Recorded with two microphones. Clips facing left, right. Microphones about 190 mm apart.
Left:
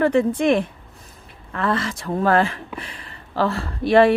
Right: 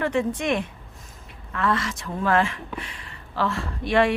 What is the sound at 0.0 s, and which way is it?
Speech, 35° left (ahead or behind).